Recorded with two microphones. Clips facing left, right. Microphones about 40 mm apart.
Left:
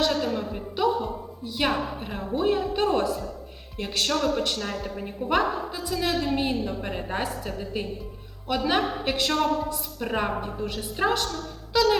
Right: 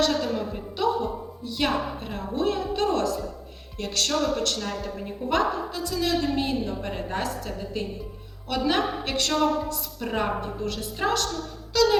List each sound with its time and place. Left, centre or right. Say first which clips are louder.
0.0 s a woman's voice: right 1 dB; centre
11.7 s music: even; centre